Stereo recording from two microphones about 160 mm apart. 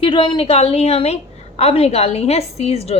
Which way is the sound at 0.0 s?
30° left (ahead or behind).